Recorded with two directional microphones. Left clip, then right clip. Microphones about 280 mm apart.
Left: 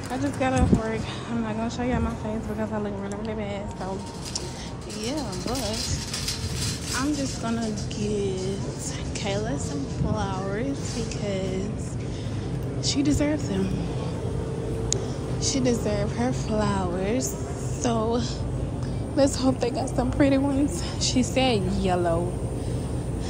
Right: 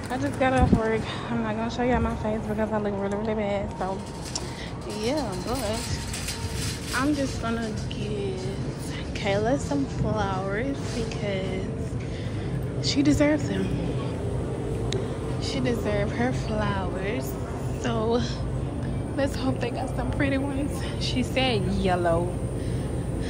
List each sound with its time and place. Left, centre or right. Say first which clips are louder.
0.1 s a woman's voice: right 2 dB; centre
8.0 s a woman's voice: left 4 dB; left
9.2 s a woman's voice: right 5 dB; centre
12.8 s a woman's voice: right 2 dB; centre
15.4 s a woman's voice: left 3 dB; left